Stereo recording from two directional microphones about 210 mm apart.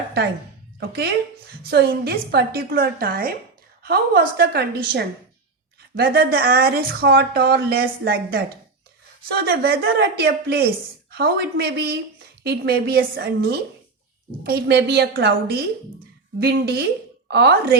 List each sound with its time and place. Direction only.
0.8 s a woman's voice: 50° right (ahead or behind)